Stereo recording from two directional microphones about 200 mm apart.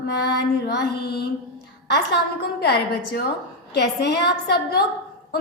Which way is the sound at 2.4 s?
55° left (ahead or behind).